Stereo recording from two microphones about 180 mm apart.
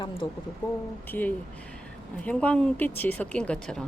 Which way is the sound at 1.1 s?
10° left (ahead or behind).